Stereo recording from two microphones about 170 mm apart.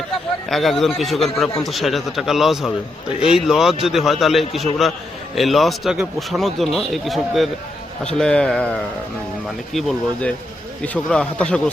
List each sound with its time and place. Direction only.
0.5 s speech: centre (ahead or behind)